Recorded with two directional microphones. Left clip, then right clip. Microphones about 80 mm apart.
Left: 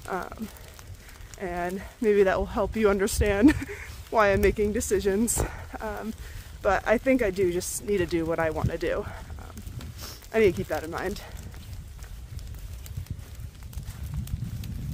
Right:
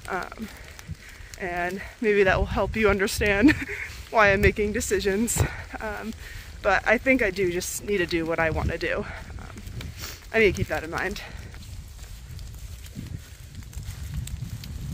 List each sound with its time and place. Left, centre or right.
0.0 s speech: centre
1.4 s speech: centre
7.3 s speech: left
7.8 s speech: centre
8.9 s a sound: centre
10.3 s speech: centre
10.7 s speech: centre